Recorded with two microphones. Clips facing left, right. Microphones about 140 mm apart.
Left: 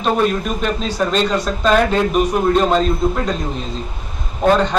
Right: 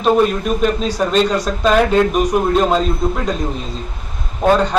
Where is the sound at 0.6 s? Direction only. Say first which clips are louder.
Right 3 dB; 10° right (ahead or behind).